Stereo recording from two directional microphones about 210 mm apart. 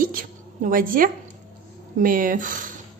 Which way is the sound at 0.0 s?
40° right (ahead or behind).